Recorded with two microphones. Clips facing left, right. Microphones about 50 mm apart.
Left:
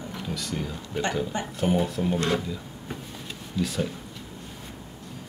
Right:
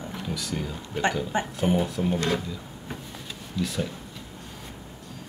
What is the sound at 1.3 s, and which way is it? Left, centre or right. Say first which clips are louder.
Speech: right 1 dB; centre.